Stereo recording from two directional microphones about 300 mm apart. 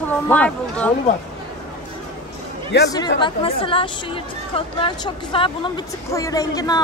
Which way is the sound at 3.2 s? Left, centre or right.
Centre.